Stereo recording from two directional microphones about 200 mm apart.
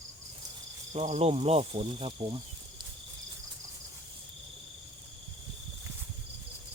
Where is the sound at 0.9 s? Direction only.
35° right (ahead or behind).